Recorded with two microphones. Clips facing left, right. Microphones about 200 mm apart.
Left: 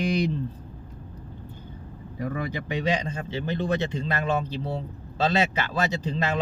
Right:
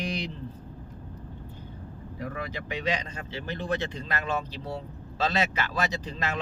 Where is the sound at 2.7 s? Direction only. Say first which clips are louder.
Left 4 dB; 30° left (ahead or behind).